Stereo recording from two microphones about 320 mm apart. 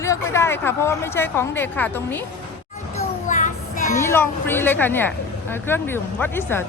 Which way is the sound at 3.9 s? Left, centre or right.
Centre.